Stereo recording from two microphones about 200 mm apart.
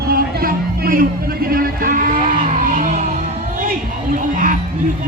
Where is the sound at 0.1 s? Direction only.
45° right (ahead or behind).